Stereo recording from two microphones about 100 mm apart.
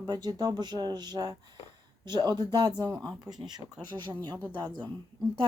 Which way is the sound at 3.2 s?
45° right (ahead or behind).